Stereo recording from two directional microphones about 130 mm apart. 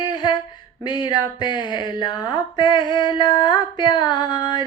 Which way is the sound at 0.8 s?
35° left (ahead or behind).